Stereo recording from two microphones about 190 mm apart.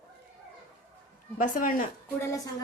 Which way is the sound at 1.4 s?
45° left (ahead or behind).